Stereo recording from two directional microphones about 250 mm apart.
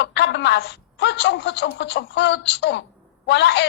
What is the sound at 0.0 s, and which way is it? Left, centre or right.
A woman's voice, left.